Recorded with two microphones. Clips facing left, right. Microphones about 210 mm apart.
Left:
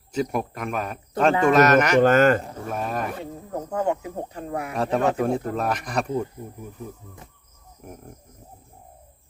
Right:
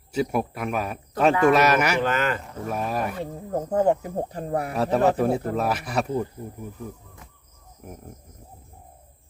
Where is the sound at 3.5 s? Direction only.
35° right (ahead or behind).